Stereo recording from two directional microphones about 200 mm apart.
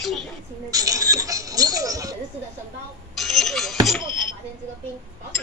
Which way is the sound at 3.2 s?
Centre (ahead or behind).